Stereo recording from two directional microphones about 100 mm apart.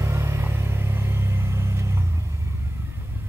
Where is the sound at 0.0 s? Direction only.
30° right (ahead or behind).